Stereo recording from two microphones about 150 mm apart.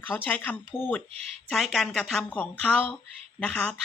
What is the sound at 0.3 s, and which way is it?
Speech, 10° left (ahead or behind).